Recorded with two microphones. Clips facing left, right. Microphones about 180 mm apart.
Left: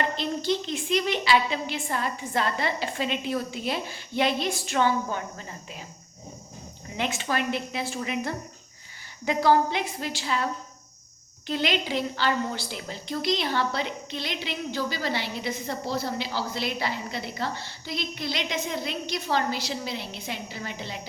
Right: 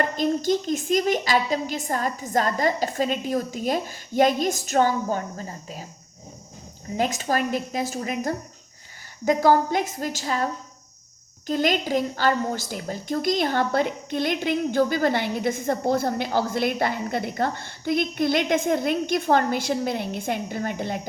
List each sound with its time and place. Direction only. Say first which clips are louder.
0.0 s a woman's voice: right 5 dB; 45° right (ahead or behind)
6.9 s a woman's voice: right 4 dB; 40° right (ahead or behind)